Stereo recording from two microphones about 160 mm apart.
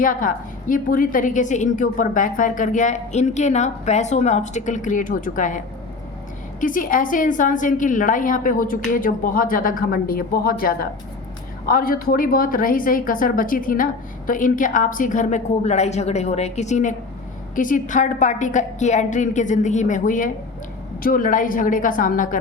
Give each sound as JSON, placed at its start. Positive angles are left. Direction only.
{"t": 0.0, "sound": "a woman's voice", "side_deg": 60}